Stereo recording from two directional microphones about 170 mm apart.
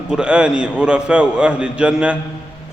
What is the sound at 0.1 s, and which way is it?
A man's voice, 5° right (ahead or behind).